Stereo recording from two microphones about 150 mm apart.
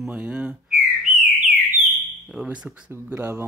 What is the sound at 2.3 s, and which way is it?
Speech, 5° right (ahead or behind).